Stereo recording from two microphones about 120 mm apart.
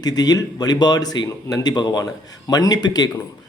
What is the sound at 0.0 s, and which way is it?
A man's voice, 35° left (ahead or behind).